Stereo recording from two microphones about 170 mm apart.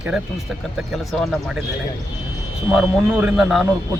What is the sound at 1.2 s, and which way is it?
Speech, centre (ahead or behind).